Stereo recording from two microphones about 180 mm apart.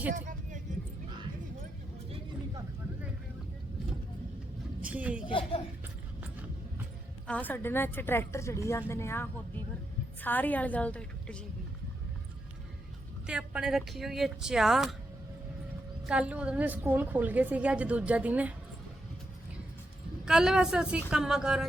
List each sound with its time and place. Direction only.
0.1 s vehicle: 45° right (ahead or behind)
4.8 s speech: 10° right (ahead or behind)
5.2 s speech: 30° left (ahead or behind)
7.3 s a woman's voice: 10° left (ahead or behind)
13.2 s speech: 5° right (ahead or behind)
16.0 s a woman's voice: 5° right (ahead or behind)
20.2 s speech: 5° right (ahead or behind)